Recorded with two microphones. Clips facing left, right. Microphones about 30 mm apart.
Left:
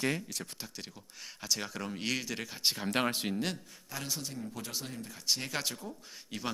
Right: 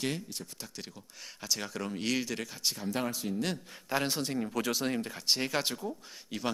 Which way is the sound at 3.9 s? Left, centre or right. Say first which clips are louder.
Right 8 dB; right.